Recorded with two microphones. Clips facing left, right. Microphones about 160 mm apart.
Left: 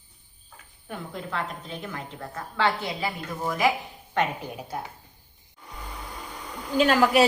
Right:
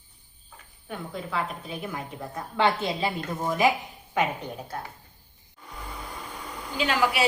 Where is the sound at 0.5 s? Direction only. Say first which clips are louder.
Even; centre (ahead or behind); by 3.1 s 20° right (ahead or behind).